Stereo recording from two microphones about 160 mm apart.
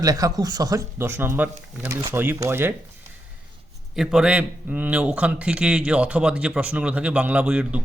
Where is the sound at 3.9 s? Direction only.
5° right (ahead or behind).